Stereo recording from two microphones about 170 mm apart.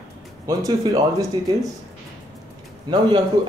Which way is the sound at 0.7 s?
20° right (ahead or behind).